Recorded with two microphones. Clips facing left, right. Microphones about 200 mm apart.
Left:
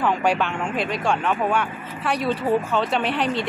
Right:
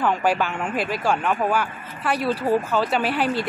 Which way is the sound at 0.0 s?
Centre (ahead or behind).